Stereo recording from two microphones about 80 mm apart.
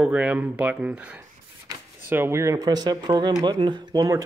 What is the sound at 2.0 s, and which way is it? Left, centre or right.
Speech, right.